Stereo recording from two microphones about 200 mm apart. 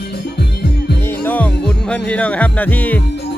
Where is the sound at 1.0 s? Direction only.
10° left (ahead or behind).